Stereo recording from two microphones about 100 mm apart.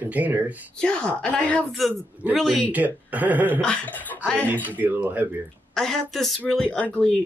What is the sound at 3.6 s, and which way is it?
Speech, 15° left (ahead or behind).